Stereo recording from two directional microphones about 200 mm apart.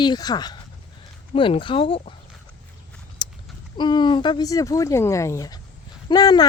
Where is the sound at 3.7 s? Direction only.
20° left (ahead or behind).